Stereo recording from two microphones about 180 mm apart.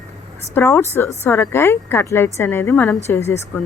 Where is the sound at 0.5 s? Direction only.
15° left (ahead or behind).